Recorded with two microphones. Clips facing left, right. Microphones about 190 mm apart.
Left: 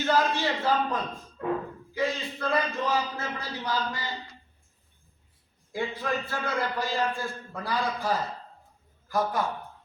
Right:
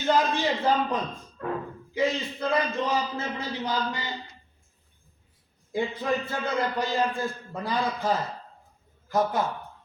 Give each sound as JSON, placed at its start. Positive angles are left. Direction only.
{"t": 0.0, "sound": "a man's voice", "side_deg": -20}
{"t": 1.4, "sound": "speech", "side_deg": 20}
{"t": 1.9, "sound": "a man's voice", "side_deg": -20}
{"t": 5.7, "sound": "a man's voice", "side_deg": -20}